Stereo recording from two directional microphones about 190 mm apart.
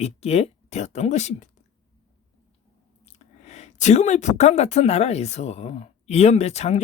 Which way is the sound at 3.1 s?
35° left (ahead or behind).